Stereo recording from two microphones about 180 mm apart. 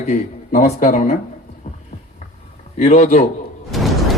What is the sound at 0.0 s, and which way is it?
Speech, 40° left (ahead or behind).